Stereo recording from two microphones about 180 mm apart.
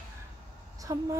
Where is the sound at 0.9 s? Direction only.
20° right (ahead or behind).